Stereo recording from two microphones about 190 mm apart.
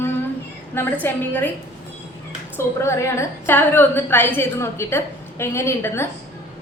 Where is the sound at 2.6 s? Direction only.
15° left (ahead or behind).